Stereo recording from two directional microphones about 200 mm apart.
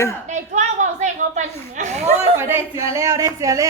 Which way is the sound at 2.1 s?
10° right (ahead or behind).